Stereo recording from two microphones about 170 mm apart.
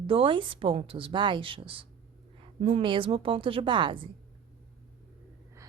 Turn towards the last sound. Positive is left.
turn(degrees=-30)  # may be behind; listen again after turning